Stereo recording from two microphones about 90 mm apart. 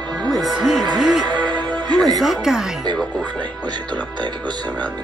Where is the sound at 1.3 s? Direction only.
50° right (ahead or behind).